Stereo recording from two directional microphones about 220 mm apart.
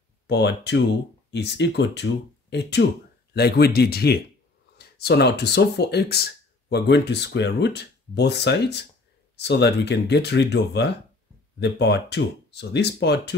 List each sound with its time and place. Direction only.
0.3 s speech: 50° left (ahead or behind)